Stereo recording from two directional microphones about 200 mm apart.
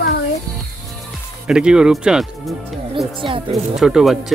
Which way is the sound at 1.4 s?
5° right (ahead or behind).